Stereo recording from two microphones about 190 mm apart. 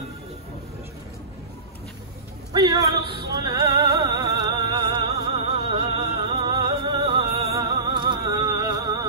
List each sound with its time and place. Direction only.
2.5 s music: 20° right (ahead or behind)